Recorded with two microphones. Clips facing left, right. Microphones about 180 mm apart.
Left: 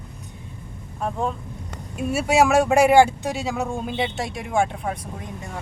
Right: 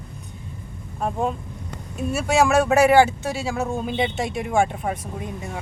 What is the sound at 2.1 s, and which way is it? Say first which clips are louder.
Speech: left 1 dB; 5° left (ahead or behind).